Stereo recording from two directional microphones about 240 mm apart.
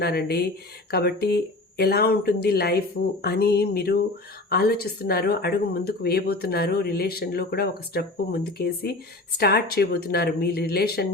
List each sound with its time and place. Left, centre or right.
0.0 s speech: left